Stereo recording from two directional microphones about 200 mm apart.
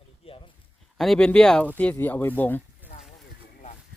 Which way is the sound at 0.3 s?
25° left (ahead or behind).